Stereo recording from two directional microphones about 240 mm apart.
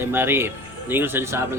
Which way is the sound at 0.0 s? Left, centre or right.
Centre.